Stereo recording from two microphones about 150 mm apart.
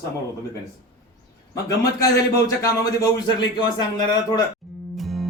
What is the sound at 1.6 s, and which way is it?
A man's voice, 20° left (ahead or behind).